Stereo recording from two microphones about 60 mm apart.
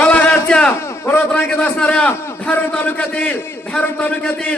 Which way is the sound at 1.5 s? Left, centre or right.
Left.